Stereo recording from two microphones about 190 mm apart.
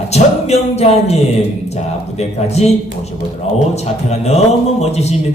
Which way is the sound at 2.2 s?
35° left (ahead or behind).